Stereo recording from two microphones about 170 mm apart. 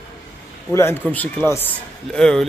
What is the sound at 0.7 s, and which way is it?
Speech, 15° left (ahead or behind).